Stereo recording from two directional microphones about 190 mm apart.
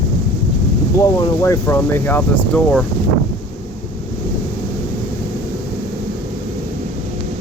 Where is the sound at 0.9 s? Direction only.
15° left (ahead or behind).